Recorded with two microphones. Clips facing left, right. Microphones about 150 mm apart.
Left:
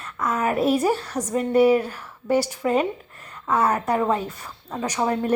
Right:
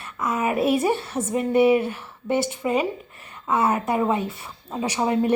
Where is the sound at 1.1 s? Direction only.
25° right (ahead or behind).